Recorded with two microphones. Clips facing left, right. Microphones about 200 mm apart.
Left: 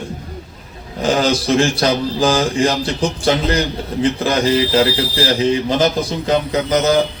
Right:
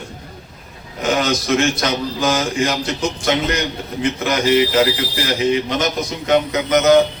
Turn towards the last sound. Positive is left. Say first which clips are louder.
# right 2 dB
turn(degrees=30)  # may be behind; listen again after turning